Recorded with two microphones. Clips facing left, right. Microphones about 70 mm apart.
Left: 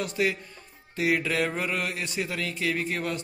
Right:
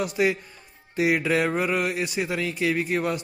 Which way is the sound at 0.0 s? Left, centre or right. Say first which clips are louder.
Right 4 dB; centre.